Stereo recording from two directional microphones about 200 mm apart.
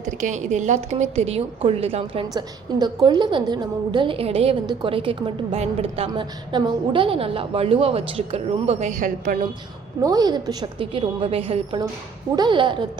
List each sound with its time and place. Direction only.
0.0 s a woman's voice: 40° right (ahead or behind)
10.0 s a woman's voice: 20° right (ahead or behind)